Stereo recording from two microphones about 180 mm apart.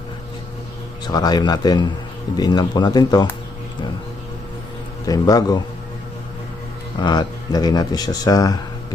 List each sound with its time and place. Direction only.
1.0 s speech: 20° left (ahead or behind)
5.0 s speech: 20° left (ahead or behind)
7.0 s speech: 25° left (ahead or behind)